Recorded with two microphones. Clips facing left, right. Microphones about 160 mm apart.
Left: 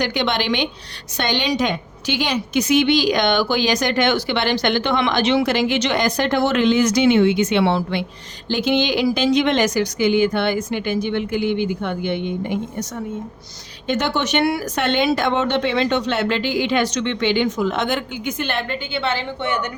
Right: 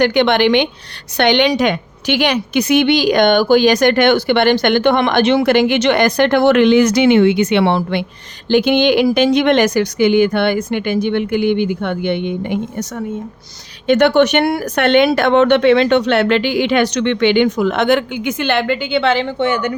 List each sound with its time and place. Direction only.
0.0 s a woman's voice: 60° right (ahead or behind); by 19.7 s 90° right